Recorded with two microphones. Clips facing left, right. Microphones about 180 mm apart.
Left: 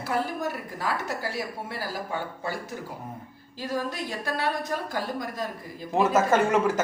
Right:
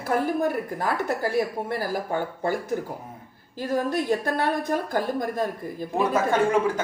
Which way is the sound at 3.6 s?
50° right (ahead or behind).